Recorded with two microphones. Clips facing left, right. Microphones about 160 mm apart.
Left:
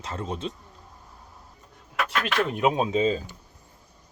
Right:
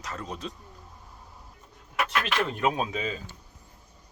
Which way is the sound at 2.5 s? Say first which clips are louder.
Left 4 dB; 20° left (ahead or behind).